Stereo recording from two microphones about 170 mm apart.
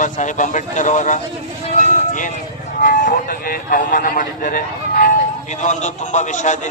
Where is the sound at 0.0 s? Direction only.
45° left (ahead or behind).